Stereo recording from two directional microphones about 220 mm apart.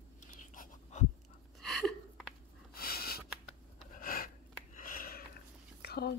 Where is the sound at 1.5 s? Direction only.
Centre (ahead or behind).